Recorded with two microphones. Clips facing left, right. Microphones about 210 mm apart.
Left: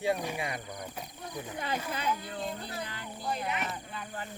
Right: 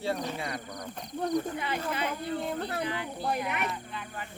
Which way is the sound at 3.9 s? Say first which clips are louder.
Even; 35° left (ahead or behind).